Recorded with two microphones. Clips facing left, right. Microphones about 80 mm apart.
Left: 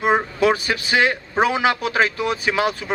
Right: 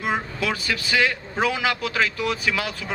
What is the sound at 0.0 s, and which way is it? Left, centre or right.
Speech, left.